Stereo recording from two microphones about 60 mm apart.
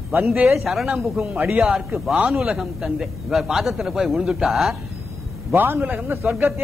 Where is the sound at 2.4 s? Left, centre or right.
Centre.